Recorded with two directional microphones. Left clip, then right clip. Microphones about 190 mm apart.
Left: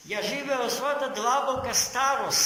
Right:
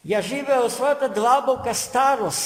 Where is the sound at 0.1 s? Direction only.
60° right (ahead or behind).